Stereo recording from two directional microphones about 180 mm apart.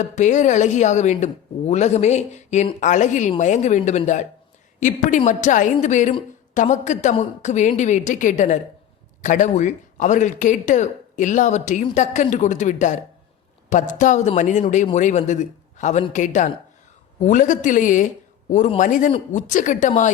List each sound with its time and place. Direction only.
0.2 s a woman's voice: 45° left (ahead or behind)